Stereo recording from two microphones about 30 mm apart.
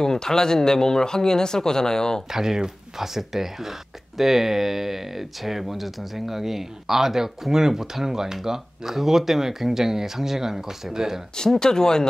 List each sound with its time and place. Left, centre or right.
0.0 s speech: centre
2.3 s speech: centre
11.6 s speech: left